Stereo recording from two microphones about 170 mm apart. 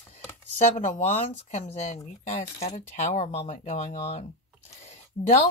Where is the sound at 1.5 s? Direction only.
40° left (ahead or behind).